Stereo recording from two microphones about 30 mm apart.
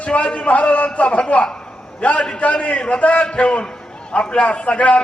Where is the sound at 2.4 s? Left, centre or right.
Left.